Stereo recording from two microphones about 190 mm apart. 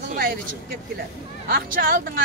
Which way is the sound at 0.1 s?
50° right (ahead or behind).